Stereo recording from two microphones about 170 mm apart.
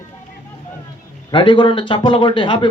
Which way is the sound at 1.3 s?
30° left (ahead or behind).